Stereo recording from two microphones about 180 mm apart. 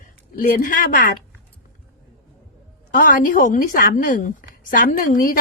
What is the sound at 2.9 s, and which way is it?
A woman's voice, 50° left (ahead or behind).